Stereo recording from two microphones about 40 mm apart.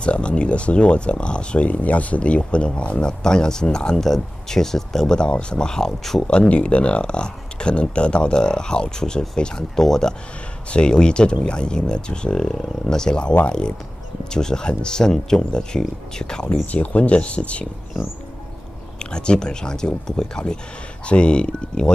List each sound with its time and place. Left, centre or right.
0.0 s speech: left
6.4 s speech: left; by 10.1 s centre
10.7 s speech: left
16.7 s speech: left
18.9 s speech: left
21.0 s speech: left